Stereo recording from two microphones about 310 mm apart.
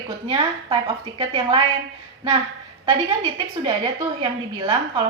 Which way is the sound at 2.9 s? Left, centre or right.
Centre.